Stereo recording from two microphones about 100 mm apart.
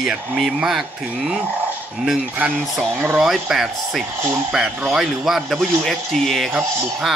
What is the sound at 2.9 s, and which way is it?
Speech, 20° right (ahead or behind).